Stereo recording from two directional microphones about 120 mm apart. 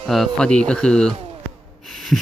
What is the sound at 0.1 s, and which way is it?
Speech, 5° left (ahead or behind).